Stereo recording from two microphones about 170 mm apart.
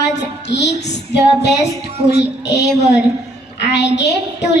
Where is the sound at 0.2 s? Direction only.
90° left.